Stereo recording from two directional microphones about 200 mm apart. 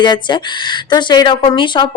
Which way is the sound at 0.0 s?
20° left (ahead or behind).